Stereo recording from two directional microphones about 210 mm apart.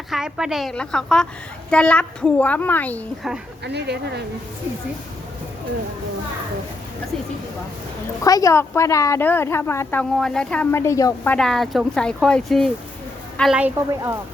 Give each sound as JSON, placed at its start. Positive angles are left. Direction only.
{"t": 0.1, "sound": "a woman's voice", "side_deg": 0}
{"t": 3.6, "sound": "speech", "side_deg": -55}
{"t": 8.2, "sound": "a woman's voice", "side_deg": 15}